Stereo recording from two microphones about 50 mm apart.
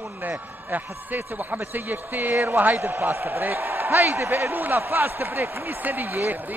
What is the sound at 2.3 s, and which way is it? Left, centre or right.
A man's voice, right.